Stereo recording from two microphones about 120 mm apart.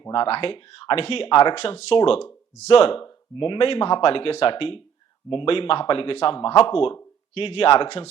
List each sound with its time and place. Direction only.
0.1 s speech: 50° left (ahead or behind)
3.3 s speech: 45° left (ahead or behind)